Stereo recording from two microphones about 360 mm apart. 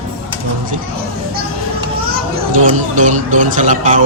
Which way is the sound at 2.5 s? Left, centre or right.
Right.